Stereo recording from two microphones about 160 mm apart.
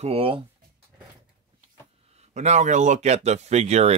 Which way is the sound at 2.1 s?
45° right (ahead or behind).